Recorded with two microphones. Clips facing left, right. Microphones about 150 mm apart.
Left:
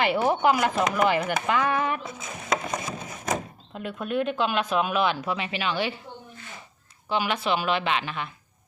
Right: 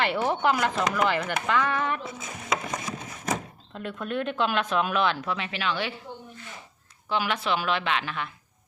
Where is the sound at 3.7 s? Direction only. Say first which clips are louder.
Left 2 dB; 10° left (ahead or behind).